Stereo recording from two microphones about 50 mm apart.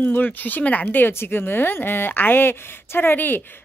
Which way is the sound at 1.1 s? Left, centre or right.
Left.